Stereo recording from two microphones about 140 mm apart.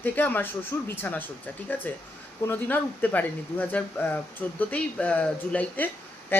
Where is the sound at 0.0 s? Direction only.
10° left (ahead or behind).